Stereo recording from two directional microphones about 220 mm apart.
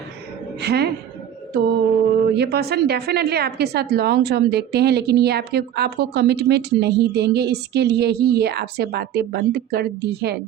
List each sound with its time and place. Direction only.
0.6 s a woman's voice: 50° right (ahead or behind)